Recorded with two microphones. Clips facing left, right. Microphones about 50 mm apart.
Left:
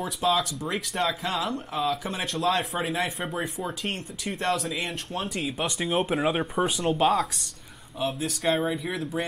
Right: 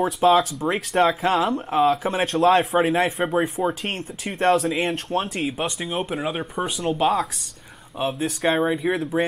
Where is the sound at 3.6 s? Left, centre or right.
Right.